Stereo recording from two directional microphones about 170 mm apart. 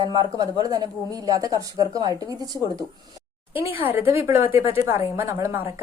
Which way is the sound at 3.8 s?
15° right (ahead or behind).